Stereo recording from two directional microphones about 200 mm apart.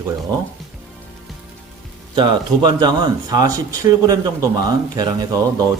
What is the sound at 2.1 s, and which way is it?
Speech, 20° right (ahead or behind).